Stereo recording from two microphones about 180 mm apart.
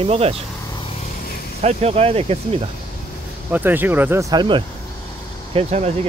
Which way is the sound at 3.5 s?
10° right (ahead or behind).